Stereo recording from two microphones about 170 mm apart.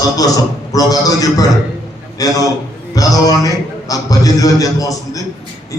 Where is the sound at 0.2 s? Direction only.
20° left (ahead or behind).